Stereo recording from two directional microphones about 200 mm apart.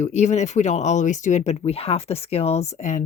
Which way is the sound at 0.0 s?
35° left (ahead or behind).